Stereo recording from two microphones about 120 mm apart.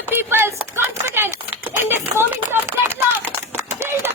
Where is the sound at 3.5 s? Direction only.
20° right (ahead or behind).